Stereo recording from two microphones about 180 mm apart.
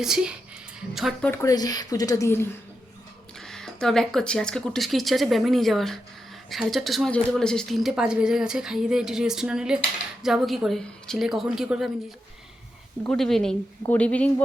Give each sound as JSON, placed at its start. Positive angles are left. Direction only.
{"t": 0.0, "sound": "a woman's voice", "side_deg": -5}
{"t": 1.3, "sound": "speech", "side_deg": 15}
{"t": 3.3, "sound": "a woman's voice", "side_deg": 5}
{"t": 13.1, "sound": "a woman's voice", "side_deg": 0}